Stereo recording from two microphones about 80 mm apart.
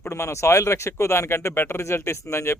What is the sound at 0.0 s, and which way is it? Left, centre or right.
Speech, left.